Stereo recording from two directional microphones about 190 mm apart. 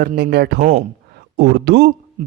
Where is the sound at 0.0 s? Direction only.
55° right (ahead or behind).